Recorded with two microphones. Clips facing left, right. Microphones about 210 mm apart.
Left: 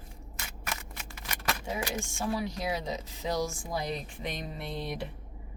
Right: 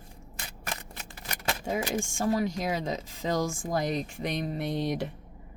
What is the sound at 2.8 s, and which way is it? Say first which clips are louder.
Speech: right 3 dB; 90° right.